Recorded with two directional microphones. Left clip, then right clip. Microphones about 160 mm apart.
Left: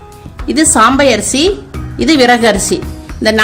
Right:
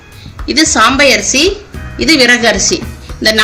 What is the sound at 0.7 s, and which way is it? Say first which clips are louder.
A woman's voice: even; 70° left (ahead or behind).